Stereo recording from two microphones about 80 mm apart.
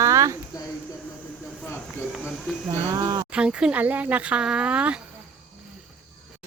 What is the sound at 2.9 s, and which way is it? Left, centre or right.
Speech, right.